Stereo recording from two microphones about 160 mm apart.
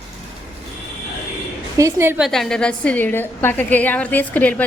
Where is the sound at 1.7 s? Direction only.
15° right (ahead or behind).